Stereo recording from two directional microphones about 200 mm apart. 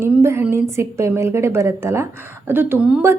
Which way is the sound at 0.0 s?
15° right (ahead or behind).